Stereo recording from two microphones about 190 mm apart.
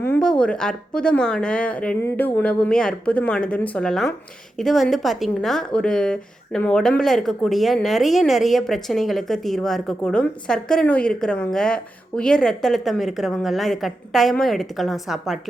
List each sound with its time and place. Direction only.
0.0 s a woman's voice: 10° left (ahead or behind)